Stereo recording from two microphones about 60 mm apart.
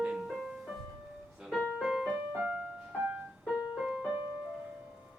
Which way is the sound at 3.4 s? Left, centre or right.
Centre.